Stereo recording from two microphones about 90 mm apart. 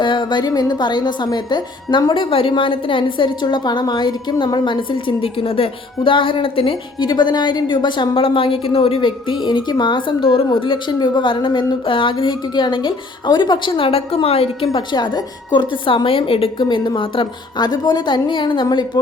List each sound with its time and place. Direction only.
0.0 s a woman's voice: 55° left (ahead or behind); by 7.1 s 80° left
7.1 s a woman's voice: 55° left (ahead or behind); by 10.9 s 75° left (ahead or behind)
11.0 s a woman's voice: 60° left (ahead or behind)
16.0 s a woman's voice: 90° left
16.6 s a woman's voice: 60° left (ahead or behind)
17.6 s a woman's voice: 50° left (ahead or behind)